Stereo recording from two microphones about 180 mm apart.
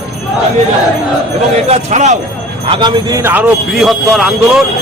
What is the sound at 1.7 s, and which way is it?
Speech, 40° right (ahead or behind).